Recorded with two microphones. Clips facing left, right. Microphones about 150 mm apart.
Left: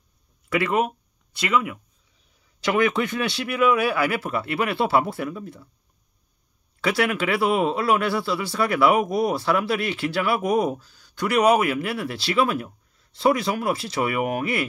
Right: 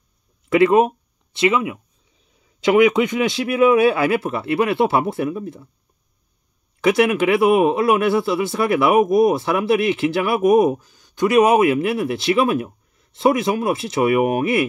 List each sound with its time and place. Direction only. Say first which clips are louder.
0.5 s speech: right 8 dB; 25° right (ahead or behind)
6.8 s speech: right 7 dB; 20° right (ahead or behind)